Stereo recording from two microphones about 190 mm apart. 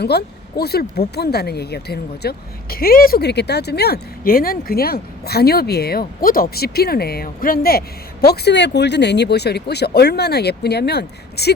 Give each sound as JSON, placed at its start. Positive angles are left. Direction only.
{"t": 0.0, "sound": "speech", "side_deg": 60}